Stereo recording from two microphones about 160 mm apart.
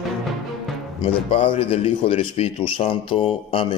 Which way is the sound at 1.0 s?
35° left (ahead or behind).